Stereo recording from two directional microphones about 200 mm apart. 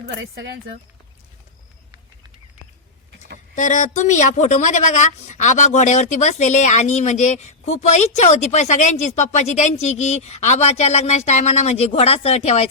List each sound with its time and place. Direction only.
0.2 s speech: 60° right (ahead or behind)
3.5 s speech: 40° left (ahead or behind)